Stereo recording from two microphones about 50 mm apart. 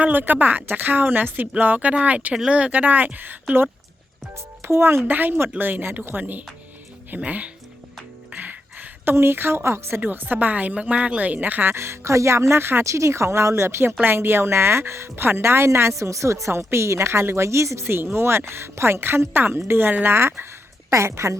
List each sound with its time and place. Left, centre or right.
0.0 s speech: right
4.6 s a woman's voice: right
5.0 s a woman's voice: right
8.3 s a sound: right
9.1 s a woman's voice: right
10.0 s speech: right
11.2 s speech: right
11.7 s a woman's voice: right
12.8 s a woman's voice: right
14.0 s a woman's voice: right
17.8 s a woman's voice: right
20.9 s a woman's voice: right